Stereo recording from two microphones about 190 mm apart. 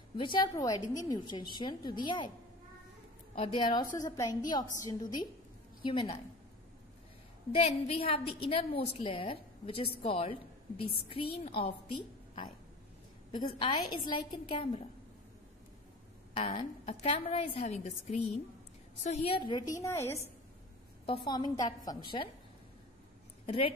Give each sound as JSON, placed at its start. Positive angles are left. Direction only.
{"t": 0.2, "sound": "a woman's voice", "side_deg": 25}
{"t": 3.5, "sound": "a woman's voice", "side_deg": 25}
{"t": 7.5, "sound": "a woman's voice", "side_deg": 30}
{"t": 13.3, "sound": "a woman's voice", "side_deg": 25}
{"t": 16.3, "sound": "a woman's voice", "side_deg": 30}
{"t": 21.3, "sound": "a woman's voice", "side_deg": 20}
{"t": 23.4, "sound": "speech", "side_deg": 30}